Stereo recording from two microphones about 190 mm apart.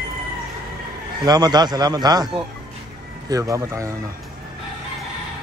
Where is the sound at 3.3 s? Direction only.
15° right (ahead or behind).